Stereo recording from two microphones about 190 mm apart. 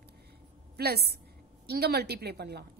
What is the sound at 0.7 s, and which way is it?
A woman's voice, 55° right (ahead or behind).